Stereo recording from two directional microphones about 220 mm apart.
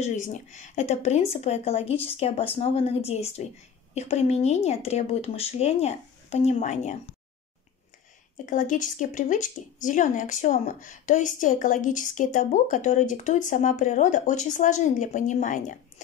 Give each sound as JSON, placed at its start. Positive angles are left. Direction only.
{"t": 0.0, "sound": "speech", "side_deg": 35}
{"t": 8.5, "sound": "speech", "side_deg": 35}